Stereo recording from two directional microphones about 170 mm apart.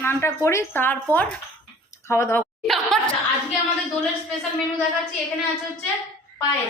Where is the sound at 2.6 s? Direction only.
Centre (ahead or behind).